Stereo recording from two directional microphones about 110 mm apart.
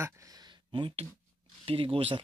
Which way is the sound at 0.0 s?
30° right (ahead or behind).